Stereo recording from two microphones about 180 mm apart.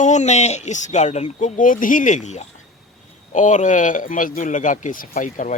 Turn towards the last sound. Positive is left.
turn(degrees=45)  # may be behind; listen again after turning